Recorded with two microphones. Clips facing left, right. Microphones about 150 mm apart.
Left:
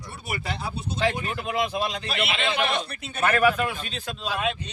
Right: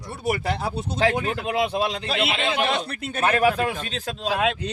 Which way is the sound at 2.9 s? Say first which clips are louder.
Right 6 dB; 55° right (ahead or behind).